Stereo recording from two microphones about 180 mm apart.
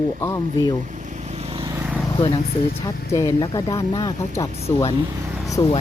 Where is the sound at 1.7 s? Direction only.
15° right (ahead or behind).